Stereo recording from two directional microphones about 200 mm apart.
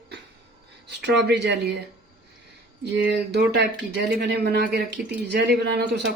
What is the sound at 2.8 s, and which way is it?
A man's voice, 55° right (ahead or behind).